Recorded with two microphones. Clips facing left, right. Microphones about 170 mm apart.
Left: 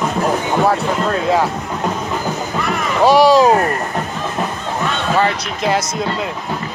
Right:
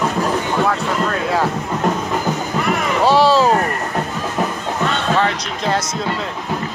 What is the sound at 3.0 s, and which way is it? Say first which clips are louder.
Speech: left 3 dB; 15° left (ahead or behind).